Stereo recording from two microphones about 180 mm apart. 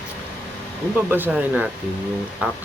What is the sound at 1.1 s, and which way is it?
Speech, 10° right (ahead or behind).